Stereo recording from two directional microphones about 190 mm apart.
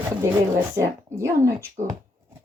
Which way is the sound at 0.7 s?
15° right (ahead or behind).